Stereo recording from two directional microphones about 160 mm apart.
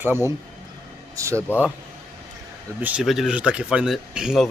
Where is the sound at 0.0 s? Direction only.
15° right (ahead or behind).